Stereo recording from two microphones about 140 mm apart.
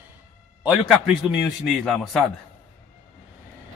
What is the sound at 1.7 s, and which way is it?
Speech, 5° left (ahead or behind).